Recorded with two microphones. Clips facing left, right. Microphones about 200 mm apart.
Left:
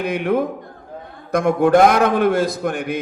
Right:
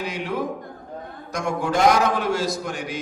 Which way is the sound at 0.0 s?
55° left (ahead or behind).